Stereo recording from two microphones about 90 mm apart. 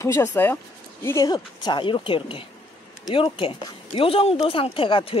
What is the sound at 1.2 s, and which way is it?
A woman's voice, 45° left (ahead or behind).